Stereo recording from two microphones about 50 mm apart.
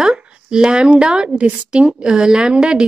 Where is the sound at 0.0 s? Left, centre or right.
Centre.